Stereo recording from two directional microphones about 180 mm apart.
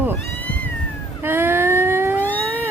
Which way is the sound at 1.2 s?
10° right (ahead or behind).